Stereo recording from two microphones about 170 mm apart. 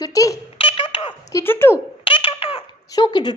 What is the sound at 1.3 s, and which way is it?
Speech, 15° left (ahead or behind).